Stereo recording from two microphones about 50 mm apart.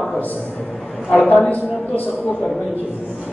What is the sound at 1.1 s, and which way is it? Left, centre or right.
A man's voice, left.